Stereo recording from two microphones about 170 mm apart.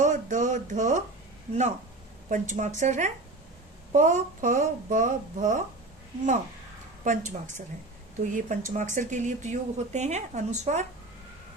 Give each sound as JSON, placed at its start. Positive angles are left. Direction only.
{"t": 0.0, "sound": "a sound", "side_deg": -50}
{"t": 2.3, "sound": "speech", "side_deg": -45}
{"t": 7.0, "sound": "speech", "side_deg": -45}